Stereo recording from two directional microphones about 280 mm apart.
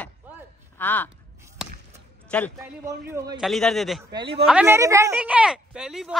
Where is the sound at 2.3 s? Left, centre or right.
Centre.